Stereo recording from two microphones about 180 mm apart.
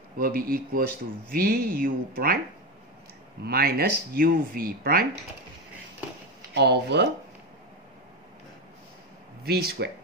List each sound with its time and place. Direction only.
0.2 s speech: 55° right (ahead or behind)
3.4 s speech: 55° right (ahead or behind)
6.5 s speech: 70° right (ahead or behind)
9.4 s speech: 60° right (ahead or behind)